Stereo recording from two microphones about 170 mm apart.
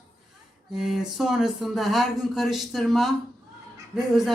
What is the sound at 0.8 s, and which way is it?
Speech, centre (ahead or behind).